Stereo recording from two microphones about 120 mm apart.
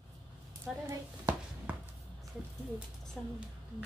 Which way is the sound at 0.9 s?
25° right (ahead or behind).